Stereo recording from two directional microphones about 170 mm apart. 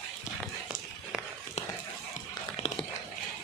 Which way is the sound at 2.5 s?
35° left (ahead or behind).